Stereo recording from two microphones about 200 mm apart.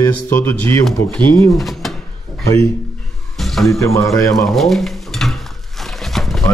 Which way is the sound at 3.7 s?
15° left (ahead or behind).